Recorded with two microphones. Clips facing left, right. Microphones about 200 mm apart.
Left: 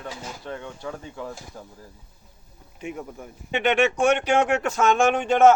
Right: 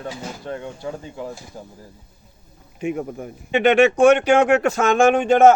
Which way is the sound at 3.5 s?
90° right.